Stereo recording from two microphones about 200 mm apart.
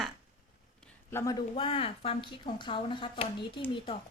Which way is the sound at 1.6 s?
25° left (ahead or behind).